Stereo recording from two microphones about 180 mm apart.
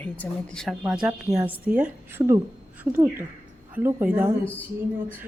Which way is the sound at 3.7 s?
10° right (ahead or behind).